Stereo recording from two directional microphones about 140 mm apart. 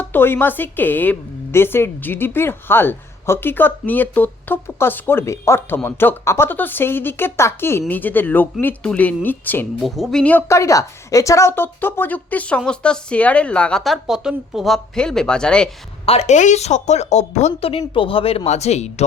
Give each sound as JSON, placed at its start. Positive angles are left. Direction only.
{"t": 0.0, "sound": "a woman's voice", "side_deg": 15}
{"t": 9.8, "sound": "speech", "side_deg": 0}
{"t": 10.5, "sound": "a woman's voice", "side_deg": 20}
{"t": 16.0, "sound": "a woman's voice", "side_deg": 50}